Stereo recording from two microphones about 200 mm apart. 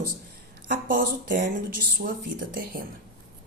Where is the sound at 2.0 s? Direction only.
60° right (ahead or behind).